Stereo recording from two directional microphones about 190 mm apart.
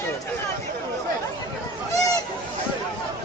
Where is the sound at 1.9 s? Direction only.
20° left (ahead or behind).